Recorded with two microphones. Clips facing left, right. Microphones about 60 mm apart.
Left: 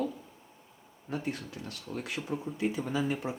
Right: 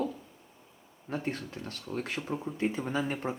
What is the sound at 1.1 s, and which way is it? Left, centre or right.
Speech, right.